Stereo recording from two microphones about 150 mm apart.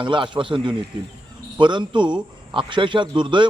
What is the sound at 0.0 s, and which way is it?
A man's voice, 35° right (ahead or behind).